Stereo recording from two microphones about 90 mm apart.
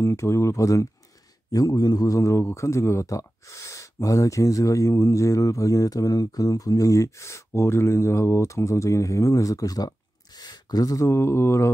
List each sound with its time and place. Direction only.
0.0 s speech: 30° left (ahead or behind)